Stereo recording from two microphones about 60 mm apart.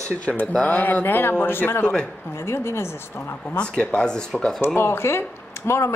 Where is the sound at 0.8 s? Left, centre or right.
Left.